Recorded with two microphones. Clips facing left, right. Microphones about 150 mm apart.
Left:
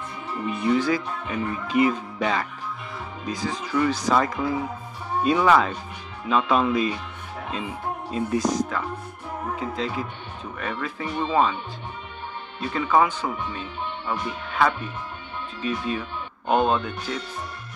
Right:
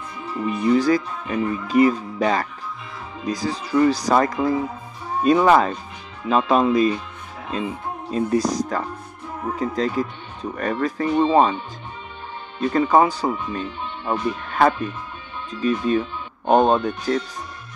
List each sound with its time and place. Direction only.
0.6 s speech: 40° right (ahead or behind)
8.1 s speech: 40° right (ahead or behind)
12.5 s speech: 40° right (ahead or behind)